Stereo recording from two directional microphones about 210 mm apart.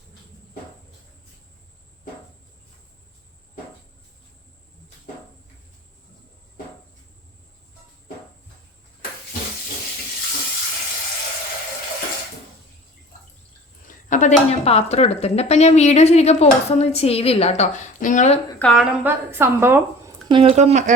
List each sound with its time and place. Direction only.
13.8 s speech: 35° left (ahead or behind)
18.6 s speech: centre (ahead or behind)
19.0 s a woman's voice: 10° right (ahead or behind)
20.2 s speech: 25° right (ahead or behind)